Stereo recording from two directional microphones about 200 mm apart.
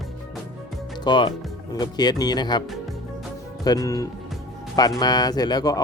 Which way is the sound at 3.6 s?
20° left (ahead or behind).